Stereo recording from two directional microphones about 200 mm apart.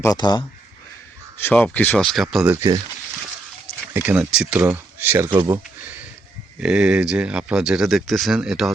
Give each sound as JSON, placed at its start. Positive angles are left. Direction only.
{"t": 0.0, "sound": "speech", "side_deg": 20}
{"t": 1.4, "sound": "speech", "side_deg": 10}
{"t": 3.9, "sound": "speech", "side_deg": -10}